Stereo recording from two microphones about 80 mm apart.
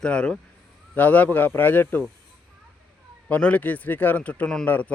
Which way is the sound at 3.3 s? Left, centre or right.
Centre.